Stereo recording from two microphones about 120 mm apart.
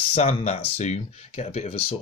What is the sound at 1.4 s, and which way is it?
Speech, 70° left (ahead or behind).